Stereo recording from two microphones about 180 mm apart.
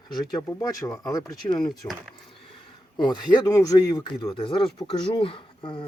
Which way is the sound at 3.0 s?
25° left (ahead or behind).